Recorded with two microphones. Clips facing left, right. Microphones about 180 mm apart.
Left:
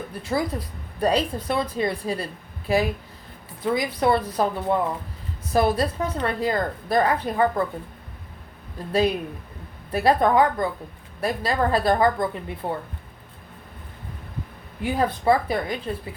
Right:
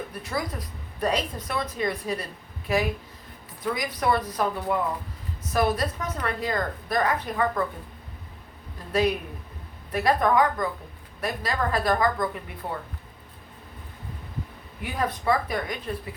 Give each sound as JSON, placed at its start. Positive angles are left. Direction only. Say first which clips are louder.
{"t": 0.1, "sound": "a woman's voice", "louder": "left 5 dB", "side_deg": 30}
{"t": 8.9, "sound": "a woman's voice", "louder": "left 2 dB", "side_deg": 30}
{"t": 14.8, "sound": "a woman's voice", "louder": "left 5 dB", "side_deg": 30}